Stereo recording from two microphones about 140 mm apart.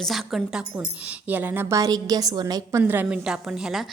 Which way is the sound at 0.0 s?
Centre (ahead or behind).